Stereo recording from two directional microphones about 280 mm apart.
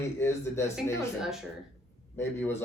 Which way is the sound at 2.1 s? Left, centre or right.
Centre.